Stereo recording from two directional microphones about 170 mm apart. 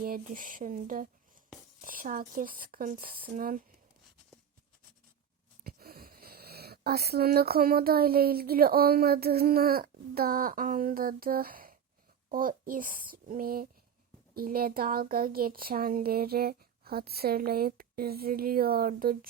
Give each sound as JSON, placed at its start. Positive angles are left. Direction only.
{"t": 0.0, "sound": "speech", "side_deg": -55}
{"t": 5.6, "sound": "speech", "side_deg": -60}